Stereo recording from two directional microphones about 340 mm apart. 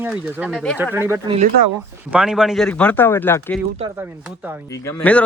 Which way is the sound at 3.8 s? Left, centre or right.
Centre.